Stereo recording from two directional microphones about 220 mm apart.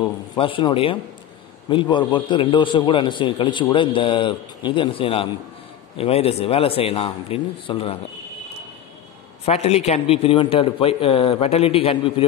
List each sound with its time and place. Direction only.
0.4 s a man's voice: 25° left (ahead or behind)
9.4 s a man's voice: 30° left (ahead or behind)